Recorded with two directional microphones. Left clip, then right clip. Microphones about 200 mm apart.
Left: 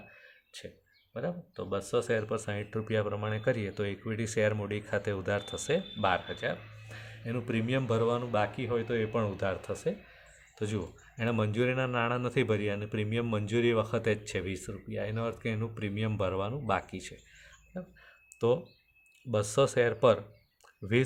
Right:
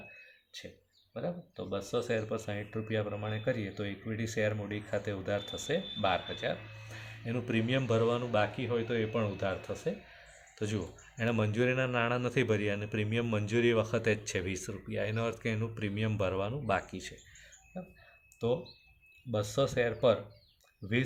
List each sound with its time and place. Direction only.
1.1 s a man's voice: 35° left (ahead or behind)
10.6 s speech: 20° left (ahead or behind)
18.3 s speech: 40° left (ahead or behind)